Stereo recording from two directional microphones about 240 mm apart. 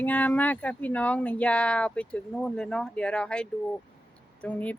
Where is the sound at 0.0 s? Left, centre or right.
Centre.